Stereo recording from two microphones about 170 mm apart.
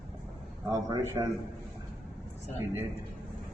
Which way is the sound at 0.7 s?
20° right (ahead or behind).